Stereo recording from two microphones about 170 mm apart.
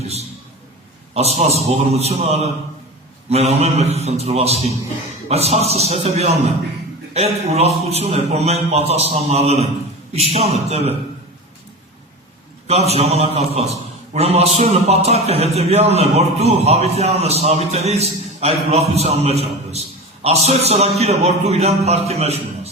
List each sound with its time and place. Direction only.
0.0 s a sound: 40° right (ahead or behind)
1.1 s a man's voice: 40° right (ahead or behind)
12.6 s a man's voice: 40° right (ahead or behind)